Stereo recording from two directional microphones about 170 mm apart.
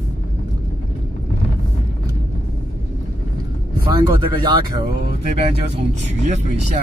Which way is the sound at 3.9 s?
25° right (ahead or behind).